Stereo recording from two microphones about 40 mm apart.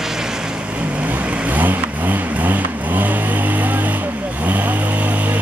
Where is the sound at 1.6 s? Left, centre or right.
Right.